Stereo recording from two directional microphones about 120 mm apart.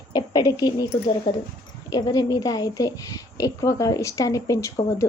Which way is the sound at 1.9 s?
35° left (ahead or behind).